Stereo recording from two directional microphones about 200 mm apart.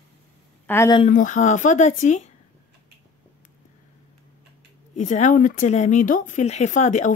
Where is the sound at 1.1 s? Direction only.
40° left (ahead or behind).